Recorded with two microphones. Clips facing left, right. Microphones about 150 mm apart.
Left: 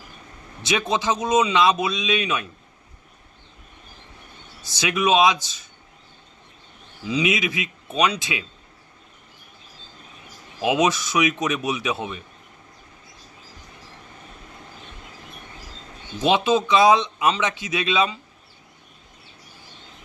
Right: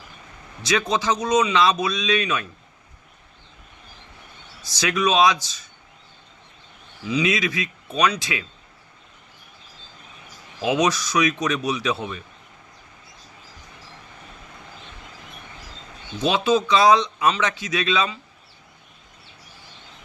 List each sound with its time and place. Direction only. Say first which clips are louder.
0.6 s speech: right 1 dB; 25° left (ahead or behind)
4.7 s speech: left 1 dB; 20° left (ahead or behind)
7.1 s speech: even; 20° left (ahead or behind)
10.6 s speech: left 1 dB; 20° left (ahead or behind)
16.2 s speech: left 1 dB; 20° left (ahead or behind)